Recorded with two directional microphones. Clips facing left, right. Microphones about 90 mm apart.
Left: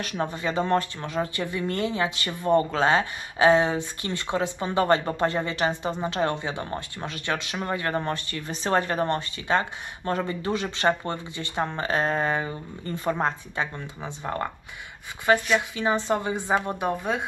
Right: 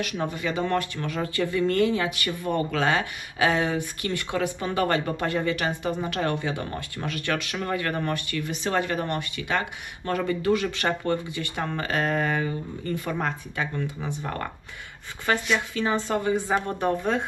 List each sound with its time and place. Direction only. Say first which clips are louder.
0.0 s speech: even; 35° left (ahead or behind)
17.0 s speech: right 2 dB; 5° left (ahead or behind)